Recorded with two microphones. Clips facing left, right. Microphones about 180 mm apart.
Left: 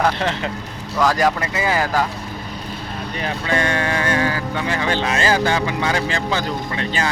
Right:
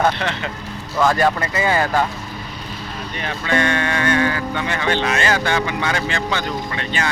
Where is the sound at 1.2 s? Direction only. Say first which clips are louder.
Right 1 dB; 10° left (ahead or behind).